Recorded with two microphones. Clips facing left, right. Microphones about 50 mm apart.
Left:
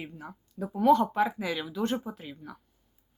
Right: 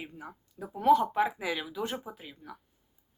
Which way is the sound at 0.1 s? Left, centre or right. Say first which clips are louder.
Left 1 dB; centre.